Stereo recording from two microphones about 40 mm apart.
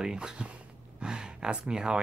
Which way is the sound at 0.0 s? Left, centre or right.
Centre.